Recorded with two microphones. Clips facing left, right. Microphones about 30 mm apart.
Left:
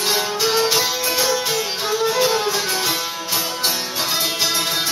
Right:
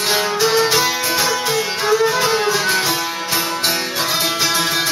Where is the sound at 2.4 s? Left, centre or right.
Right.